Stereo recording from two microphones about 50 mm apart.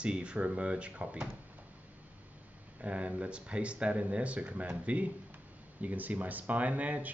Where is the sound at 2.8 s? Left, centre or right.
Right.